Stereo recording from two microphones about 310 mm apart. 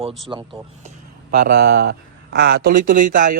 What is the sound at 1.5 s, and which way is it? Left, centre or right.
Speech, right.